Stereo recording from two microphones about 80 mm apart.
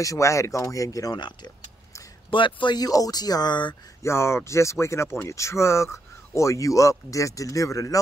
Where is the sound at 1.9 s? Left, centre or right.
Left.